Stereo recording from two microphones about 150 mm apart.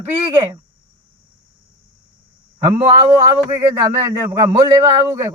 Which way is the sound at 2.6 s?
25° right (ahead or behind).